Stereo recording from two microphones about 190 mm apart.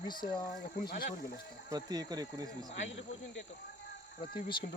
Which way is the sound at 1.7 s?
20° right (ahead or behind).